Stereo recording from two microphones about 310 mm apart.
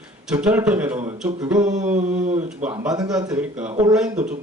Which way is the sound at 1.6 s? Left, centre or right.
Right.